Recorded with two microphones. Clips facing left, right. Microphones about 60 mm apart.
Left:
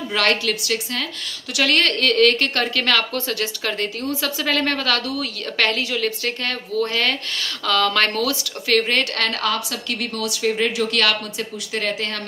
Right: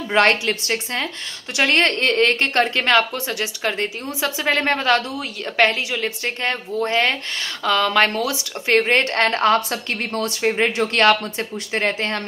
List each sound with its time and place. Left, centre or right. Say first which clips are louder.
0.1 s a woman's voice: right 4 dB; right
8.6 s a woman's voice: right 2 dB; right